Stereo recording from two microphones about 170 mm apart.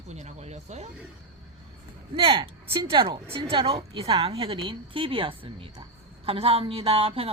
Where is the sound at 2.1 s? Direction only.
30° right (ahead or behind).